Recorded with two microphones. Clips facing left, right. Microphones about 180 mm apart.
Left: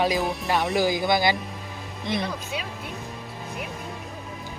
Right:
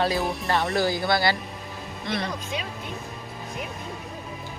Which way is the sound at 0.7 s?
20° left (ahead or behind).